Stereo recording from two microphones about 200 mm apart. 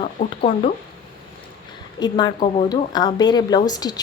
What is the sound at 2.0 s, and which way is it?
A woman's voice, 20° left (ahead or behind).